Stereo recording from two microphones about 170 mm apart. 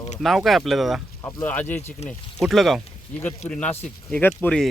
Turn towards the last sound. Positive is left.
turn(degrees=10)  # may be behind; listen again after turning